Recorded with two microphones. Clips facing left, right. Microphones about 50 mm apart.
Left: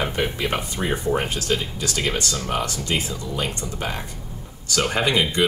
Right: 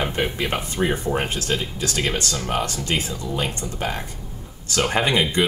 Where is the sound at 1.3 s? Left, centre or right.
Right.